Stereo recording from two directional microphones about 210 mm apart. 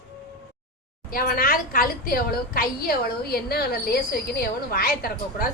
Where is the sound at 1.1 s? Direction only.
45° left (ahead or behind).